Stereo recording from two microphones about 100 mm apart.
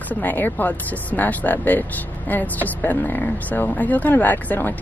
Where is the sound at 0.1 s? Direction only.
15° left (ahead or behind).